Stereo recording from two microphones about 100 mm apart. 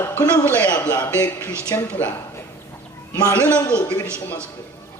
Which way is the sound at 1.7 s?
35° left (ahead or behind).